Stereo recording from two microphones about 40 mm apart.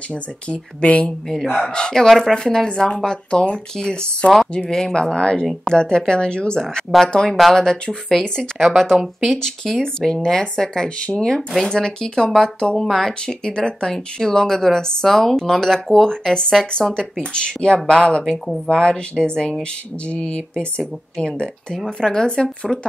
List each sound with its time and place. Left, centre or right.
0.1 s speech: left
1.5 s speech: centre
2.0 s speech: centre
8.5 s speech: centre
9.3 s speech: centre
11.0 s speech: left
11.6 s speech: centre
12.7 s speech: centre
13.0 s speech: centre